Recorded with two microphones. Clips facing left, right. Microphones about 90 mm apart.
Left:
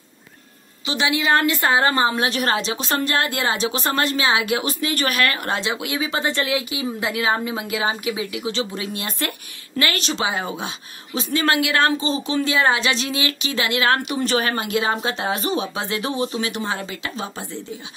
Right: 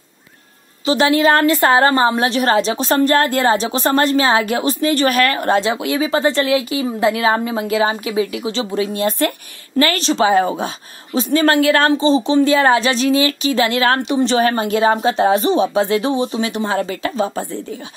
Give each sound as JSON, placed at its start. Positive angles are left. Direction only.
{"t": 0.8, "sound": "a woman's voice", "side_deg": -45}